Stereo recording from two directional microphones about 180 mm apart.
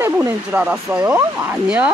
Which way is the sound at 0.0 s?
10° right (ahead or behind).